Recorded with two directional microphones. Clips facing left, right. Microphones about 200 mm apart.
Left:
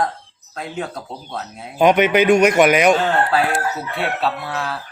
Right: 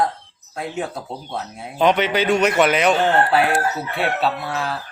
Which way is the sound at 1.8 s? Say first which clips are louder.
Left 4 dB; 15° left (ahead or behind).